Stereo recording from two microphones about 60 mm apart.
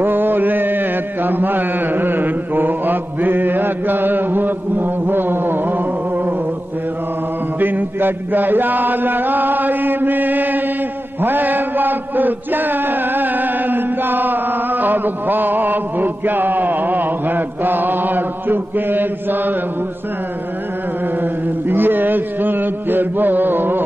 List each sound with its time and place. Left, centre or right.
0.0 s mantra: right
7.6 s chant: right
21.2 s chant: right